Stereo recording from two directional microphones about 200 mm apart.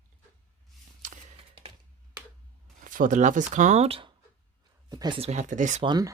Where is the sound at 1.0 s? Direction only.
40° right (ahead or behind).